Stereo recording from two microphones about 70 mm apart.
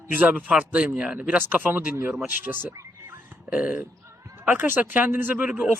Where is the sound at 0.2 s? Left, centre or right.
Right.